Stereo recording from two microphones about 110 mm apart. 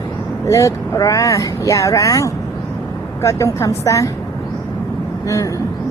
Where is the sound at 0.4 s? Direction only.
30° left (ahead or behind).